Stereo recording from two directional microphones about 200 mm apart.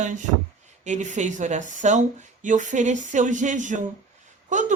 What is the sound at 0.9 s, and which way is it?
Speech, 35° right (ahead or behind).